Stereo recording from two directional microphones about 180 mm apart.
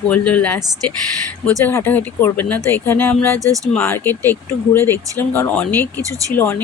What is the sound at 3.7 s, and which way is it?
Speech, 10° left (ahead or behind).